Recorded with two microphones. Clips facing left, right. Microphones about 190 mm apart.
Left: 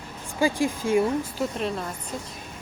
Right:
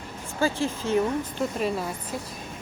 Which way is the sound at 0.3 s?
15° left (ahead or behind).